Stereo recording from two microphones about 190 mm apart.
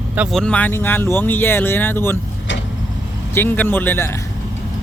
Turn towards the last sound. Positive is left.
turn(degrees=10)  # may be behind; listen again after turning